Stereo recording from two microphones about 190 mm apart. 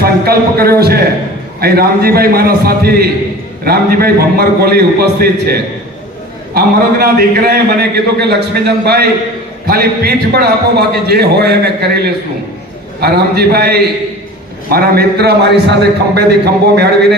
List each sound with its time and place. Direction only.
0.0 s a man's voice: 55° right (ahead or behind)
13.0 s a man's voice: 55° right (ahead or behind)